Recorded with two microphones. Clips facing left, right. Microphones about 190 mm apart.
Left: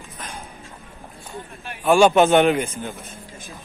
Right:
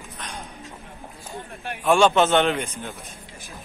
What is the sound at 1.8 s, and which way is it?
Speech, 5° left (ahead or behind).